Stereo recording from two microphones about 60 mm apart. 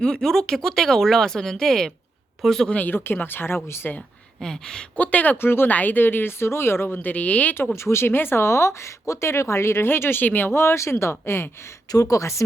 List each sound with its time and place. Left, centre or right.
0.0 s speech: centre
2.6 s speech: left
2.9 s speech: left
4.4 s speech: centre
4.9 s speech: left
7.8 s speech: left
11.9 s speech: left